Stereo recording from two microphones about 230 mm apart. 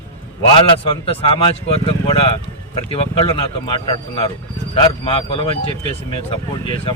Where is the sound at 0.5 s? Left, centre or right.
Left.